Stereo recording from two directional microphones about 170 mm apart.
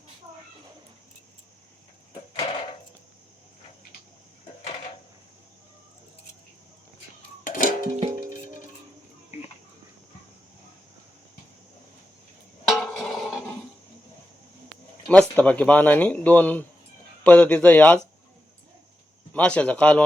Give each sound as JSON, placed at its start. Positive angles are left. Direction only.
{"t": 7.4, "sound": "music", "side_deg": 50}
{"t": 12.6, "sound": "a sound", "side_deg": 0}
{"t": 15.0, "sound": "speech", "side_deg": 5}
{"t": 19.3, "sound": "speech", "side_deg": 5}